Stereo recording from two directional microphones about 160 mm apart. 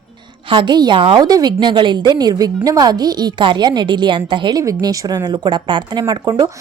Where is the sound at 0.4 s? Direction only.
30° right (ahead or behind).